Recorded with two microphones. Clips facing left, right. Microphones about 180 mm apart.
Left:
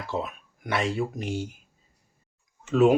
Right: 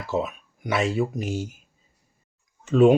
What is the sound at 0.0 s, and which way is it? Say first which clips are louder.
Speech: right 4 dB; 5° right (ahead or behind).